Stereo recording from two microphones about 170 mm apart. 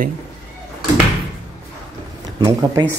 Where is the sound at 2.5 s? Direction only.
25° right (ahead or behind).